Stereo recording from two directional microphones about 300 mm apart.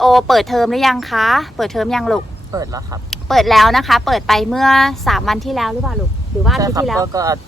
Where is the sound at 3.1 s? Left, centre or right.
Centre.